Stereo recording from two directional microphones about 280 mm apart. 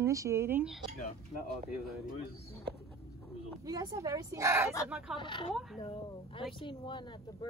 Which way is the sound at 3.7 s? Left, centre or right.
Centre.